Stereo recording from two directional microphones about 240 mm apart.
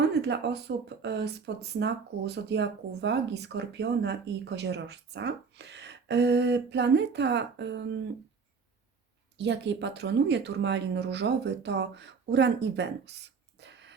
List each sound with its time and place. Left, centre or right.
0.1 s speech: right
9.4 s speech: right